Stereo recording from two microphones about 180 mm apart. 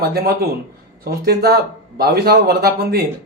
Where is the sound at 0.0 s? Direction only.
60° right (ahead or behind).